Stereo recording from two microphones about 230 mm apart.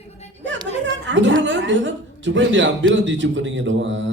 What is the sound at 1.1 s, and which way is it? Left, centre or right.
A man's voice, right.